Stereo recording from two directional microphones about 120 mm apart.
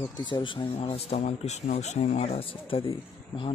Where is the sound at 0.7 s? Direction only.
60° left (ahead or behind).